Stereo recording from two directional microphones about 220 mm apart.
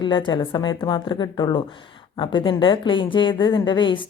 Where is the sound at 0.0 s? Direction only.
20° left (ahead or behind).